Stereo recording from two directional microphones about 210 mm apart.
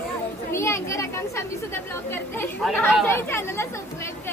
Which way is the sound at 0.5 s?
15° left (ahead or behind).